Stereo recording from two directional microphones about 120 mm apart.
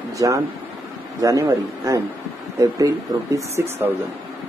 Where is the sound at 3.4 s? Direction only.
20° right (ahead or behind).